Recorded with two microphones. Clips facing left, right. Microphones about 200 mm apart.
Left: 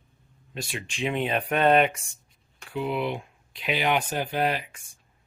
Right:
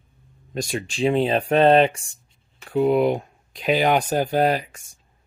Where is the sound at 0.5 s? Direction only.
40° right (ahead or behind).